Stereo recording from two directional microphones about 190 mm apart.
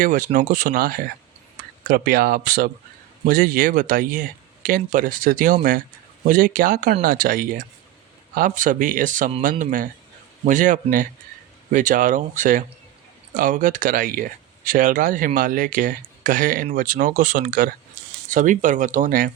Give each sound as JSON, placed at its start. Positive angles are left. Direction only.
{"t": 0.0, "sound": "speech", "side_deg": -45}